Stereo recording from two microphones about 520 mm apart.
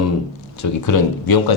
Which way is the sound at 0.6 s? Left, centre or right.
Left.